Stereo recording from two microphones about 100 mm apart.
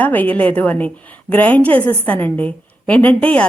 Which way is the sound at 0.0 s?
15° left (ahead or behind).